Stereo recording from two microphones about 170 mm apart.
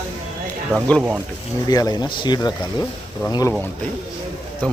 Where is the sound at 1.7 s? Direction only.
25° left (ahead or behind).